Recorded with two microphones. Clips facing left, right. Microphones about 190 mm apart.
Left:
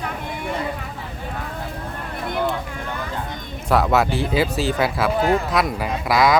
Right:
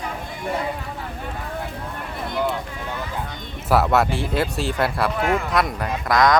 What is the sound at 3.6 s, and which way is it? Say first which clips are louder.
Speech: even; centre (ahead or behind).